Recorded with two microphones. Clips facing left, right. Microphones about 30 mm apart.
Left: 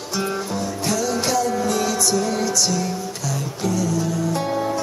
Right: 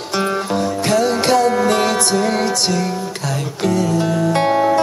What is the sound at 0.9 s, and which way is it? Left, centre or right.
Music, right.